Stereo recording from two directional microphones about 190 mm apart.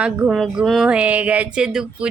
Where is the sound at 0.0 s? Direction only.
5° right (ahead or behind).